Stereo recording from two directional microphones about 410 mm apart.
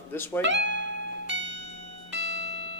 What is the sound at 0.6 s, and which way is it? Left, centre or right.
Speech, right.